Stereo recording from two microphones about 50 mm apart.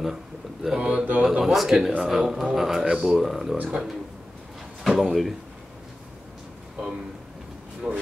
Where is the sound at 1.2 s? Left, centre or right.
Centre.